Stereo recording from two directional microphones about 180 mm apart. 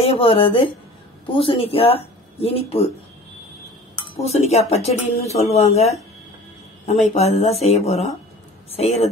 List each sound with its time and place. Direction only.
0.0 s speech: 30° left (ahead or behind)
4.0 s speech: 35° left (ahead or behind)